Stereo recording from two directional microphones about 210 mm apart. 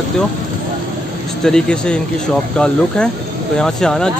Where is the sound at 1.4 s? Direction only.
5° left (ahead or behind).